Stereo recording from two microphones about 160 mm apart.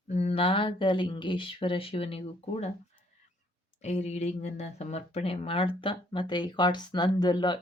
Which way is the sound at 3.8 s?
45° left (ahead or behind).